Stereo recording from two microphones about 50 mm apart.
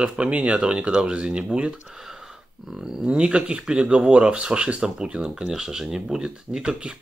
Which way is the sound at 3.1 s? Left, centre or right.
Right.